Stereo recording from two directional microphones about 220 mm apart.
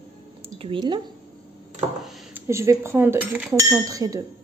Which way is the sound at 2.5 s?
15° right (ahead or behind).